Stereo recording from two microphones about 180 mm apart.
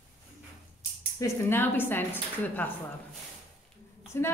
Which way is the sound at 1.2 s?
10° left (ahead or behind).